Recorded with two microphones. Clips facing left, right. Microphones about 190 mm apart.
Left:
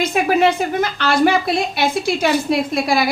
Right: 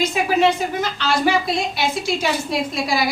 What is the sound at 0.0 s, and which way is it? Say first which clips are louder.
A woman's voice: left 2 dB; 55° left (ahead or behind).